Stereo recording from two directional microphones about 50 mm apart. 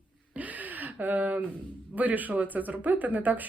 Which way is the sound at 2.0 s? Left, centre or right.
Right.